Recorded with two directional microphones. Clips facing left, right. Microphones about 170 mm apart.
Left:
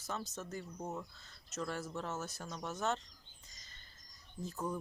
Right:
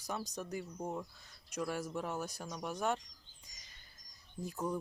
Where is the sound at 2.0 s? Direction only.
15° right (ahead or behind).